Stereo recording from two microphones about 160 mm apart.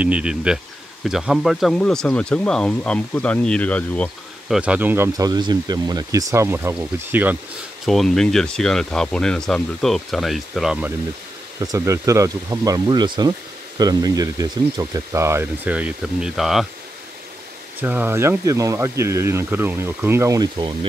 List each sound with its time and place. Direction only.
0.0 s speech: 5° right (ahead or behind)
4.5 s speech: 5° right (ahead or behind)
7.8 s speech: centre (ahead or behind)
11.6 s speech: 20° right (ahead or behind); by 16.6 s centre (ahead or behind)
17.7 s speech: 10° right (ahead or behind); by 20.7 s 25° right (ahead or behind)